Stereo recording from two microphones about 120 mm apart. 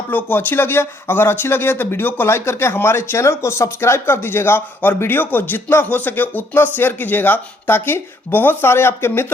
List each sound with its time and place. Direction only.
0.1 s speech: 15° left (ahead or behind)